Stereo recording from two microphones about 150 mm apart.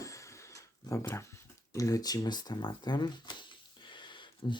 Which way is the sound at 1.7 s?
25° left (ahead or behind).